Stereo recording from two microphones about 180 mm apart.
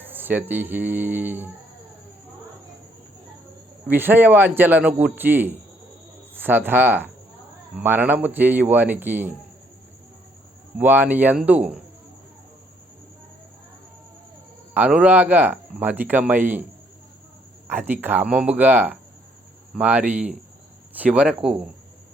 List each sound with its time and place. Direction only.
0.1 s speech: 10° right (ahead or behind)
3.8 s speech: 10° right (ahead or behind)
10.8 s speech: 10° right (ahead or behind)
14.7 s speech: 10° right (ahead or behind)
17.7 s speech: 10° right (ahead or behind)